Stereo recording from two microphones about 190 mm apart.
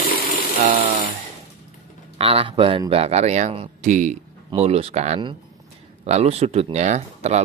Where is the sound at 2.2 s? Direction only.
30° right (ahead or behind).